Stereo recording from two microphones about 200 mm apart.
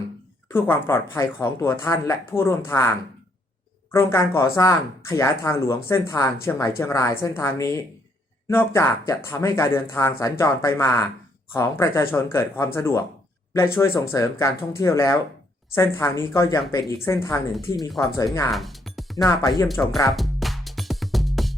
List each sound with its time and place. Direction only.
0.4 s speech: 10° left (ahead or behind)
3.9 s speech: 10° left (ahead or behind)
17.5 s speech: centre (ahead or behind)
18.5 s music: centre (ahead or behind)
19.2 s speech: 15° left (ahead or behind)
19.6 s speech: centre (ahead or behind)
20.1 s music: centre (ahead or behind)